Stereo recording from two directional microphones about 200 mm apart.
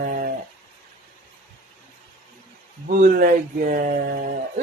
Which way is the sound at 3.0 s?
45° right (ahead or behind).